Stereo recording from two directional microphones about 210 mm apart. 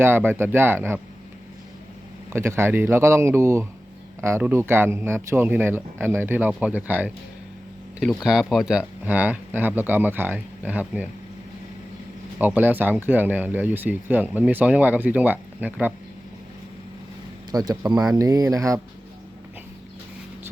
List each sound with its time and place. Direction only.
0.0 s speech: 10° right (ahead or behind)
2.3 s speech: 10° right (ahead or behind)
12.4 s speech: 10° right (ahead or behind)
17.5 s speech: 20° right (ahead or behind)